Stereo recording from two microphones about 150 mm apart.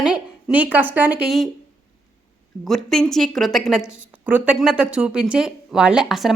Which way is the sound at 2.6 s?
5° left (ahead or behind).